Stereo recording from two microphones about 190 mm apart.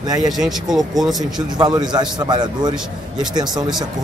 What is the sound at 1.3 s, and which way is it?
A man's voice, 20° right (ahead or behind).